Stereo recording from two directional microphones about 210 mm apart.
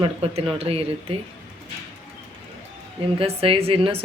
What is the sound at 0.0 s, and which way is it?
Speech, 25° right (ahead or behind).